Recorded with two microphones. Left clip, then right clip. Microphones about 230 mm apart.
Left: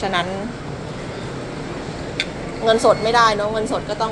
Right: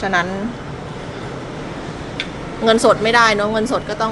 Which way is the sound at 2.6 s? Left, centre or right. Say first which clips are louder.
Right 2 dB; right.